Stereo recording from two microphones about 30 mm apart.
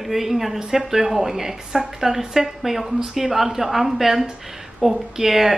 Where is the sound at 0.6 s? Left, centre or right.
Right.